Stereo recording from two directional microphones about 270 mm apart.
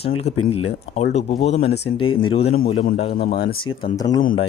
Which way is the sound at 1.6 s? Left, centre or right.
Left.